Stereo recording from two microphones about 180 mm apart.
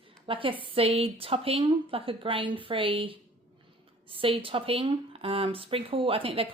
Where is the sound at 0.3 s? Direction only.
30° right (ahead or behind).